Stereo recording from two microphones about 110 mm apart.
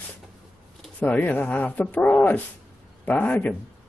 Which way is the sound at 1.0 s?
15° left (ahead or behind).